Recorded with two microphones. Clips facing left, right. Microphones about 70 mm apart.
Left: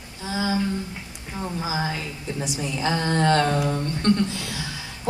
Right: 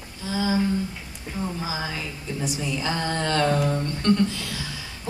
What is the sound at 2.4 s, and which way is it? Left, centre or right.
A woman's voice, left.